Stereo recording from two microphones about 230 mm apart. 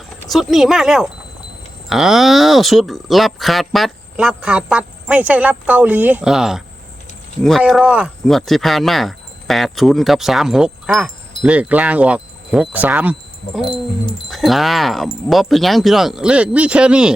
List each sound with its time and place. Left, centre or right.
0.3 s speech: centre
13.7 s speech: left
14.3 s speech: centre